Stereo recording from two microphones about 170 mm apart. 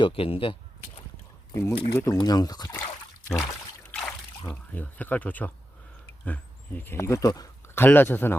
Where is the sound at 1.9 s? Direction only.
20° left (ahead or behind).